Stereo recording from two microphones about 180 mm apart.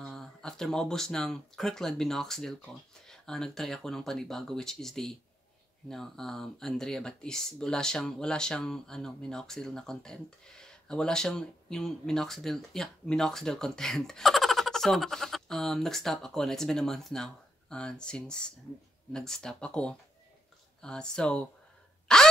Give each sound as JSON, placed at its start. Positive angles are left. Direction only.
{"t": 0.0, "sound": "speech", "side_deg": 5}
{"t": 22.0, "sound": "gasp", "side_deg": 5}